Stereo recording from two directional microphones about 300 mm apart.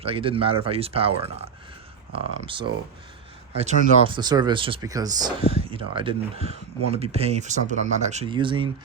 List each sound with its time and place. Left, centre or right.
0.0 s speech: centre